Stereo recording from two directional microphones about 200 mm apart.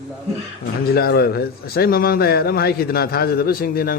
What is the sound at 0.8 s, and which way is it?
Speech, 50° left (ahead or behind).